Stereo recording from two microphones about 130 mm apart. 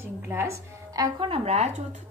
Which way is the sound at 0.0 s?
20° right (ahead or behind).